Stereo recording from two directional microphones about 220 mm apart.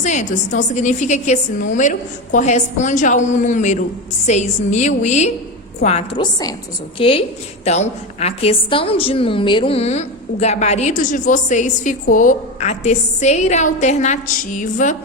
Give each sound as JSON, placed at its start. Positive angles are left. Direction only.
{"t": 0.0, "sound": "a woman's voice", "side_deg": 35}